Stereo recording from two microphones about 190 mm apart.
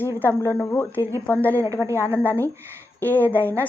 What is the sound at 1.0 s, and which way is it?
Speech, 15° right (ahead or behind).